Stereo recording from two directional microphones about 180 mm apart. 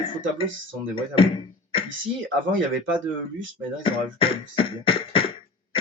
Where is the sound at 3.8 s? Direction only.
30° left (ahead or behind).